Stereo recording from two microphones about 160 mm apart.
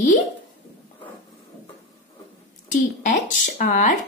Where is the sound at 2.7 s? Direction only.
50° left (ahead or behind).